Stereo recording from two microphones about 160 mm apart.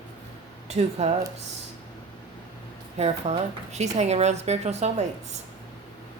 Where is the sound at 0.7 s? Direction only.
40° right (ahead or behind).